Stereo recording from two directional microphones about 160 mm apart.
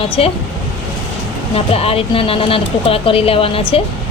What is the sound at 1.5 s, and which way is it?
A woman's voice, 40° left (ahead or behind).